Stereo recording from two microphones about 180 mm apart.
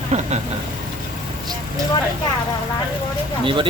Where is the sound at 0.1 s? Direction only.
40° right (ahead or behind).